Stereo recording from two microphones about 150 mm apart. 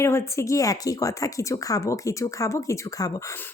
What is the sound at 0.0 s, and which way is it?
Speech, 20° left (ahead or behind).